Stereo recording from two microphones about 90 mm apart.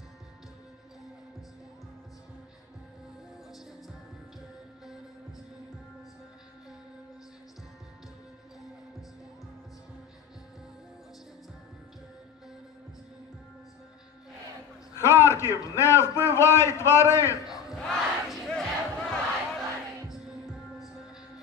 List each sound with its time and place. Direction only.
15.0 s a sound: 30° left (ahead or behind)
15.7 s a man's voice: 30° left (ahead or behind)
17.7 s battle cry: 5° left (ahead or behind)